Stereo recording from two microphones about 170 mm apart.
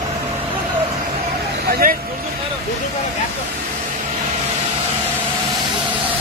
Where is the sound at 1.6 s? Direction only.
65° right (ahead or behind).